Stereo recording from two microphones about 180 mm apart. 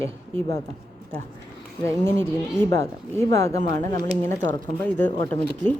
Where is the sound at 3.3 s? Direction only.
15° left (ahead or behind).